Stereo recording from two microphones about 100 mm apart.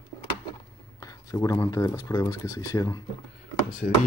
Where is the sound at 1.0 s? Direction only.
35° left (ahead or behind).